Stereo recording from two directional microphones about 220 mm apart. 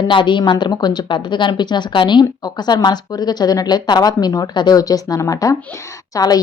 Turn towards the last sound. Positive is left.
turn(degrees=15)  # may be behind; listen again after turning